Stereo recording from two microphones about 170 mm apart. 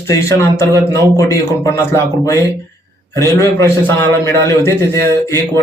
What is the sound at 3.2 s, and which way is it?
A man's voice, 15° left (ahead or behind).